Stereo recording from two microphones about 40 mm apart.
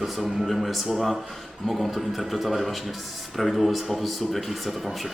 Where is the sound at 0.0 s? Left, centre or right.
Centre.